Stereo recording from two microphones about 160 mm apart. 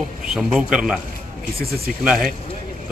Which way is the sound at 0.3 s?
5° right (ahead or behind).